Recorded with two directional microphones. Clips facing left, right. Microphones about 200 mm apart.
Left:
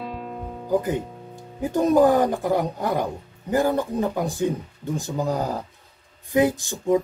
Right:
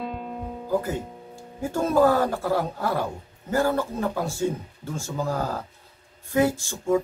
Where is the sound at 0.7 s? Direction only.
15° left (ahead or behind).